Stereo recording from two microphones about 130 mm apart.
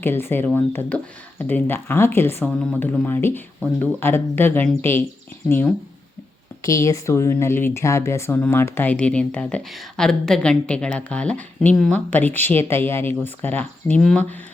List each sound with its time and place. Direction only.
0.0 s speech: 15° left (ahead or behind)
6.6 s speech: 25° left (ahead or behind); by 14.2 s 5° left (ahead or behind)